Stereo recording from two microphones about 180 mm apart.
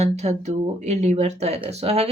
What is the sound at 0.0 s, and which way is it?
Speech, 35° right (ahead or behind).